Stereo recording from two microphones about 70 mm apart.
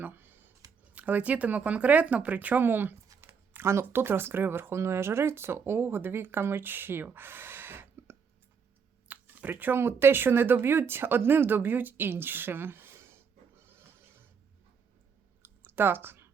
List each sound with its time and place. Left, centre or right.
0.0 s computer keyboard: right
0.9 s speech: right
3.1 s a sound: right
3.5 s speech: right
13.6 s a sound: right
15.4 s clicking: right